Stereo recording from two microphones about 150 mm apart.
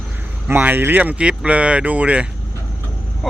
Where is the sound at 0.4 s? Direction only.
10° right (ahead or behind).